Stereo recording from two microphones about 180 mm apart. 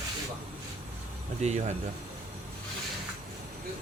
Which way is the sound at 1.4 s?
40° right (ahead or behind).